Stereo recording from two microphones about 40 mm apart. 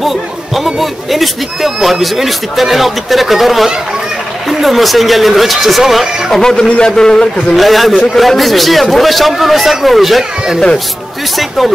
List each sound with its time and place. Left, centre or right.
0.7 s speech: centre
6.3 s a man's voice: centre
7.5 s speech: centre
11.3 s speech: centre